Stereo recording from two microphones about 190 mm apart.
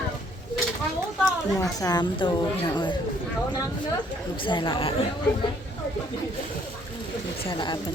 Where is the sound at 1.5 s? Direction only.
20° left (ahead or behind).